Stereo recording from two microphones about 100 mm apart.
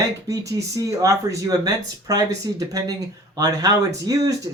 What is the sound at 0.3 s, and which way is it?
Speech, 35° right (ahead or behind).